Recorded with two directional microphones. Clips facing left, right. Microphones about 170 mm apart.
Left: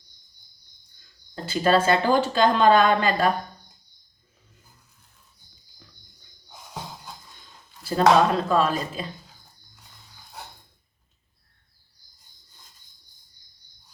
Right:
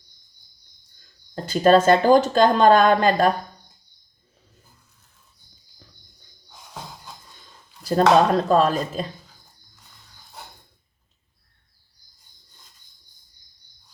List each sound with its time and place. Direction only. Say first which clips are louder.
1.5 s speech: right 5 dB; 45° right (ahead or behind)
7.9 s speech: right 2 dB; 40° right (ahead or behind)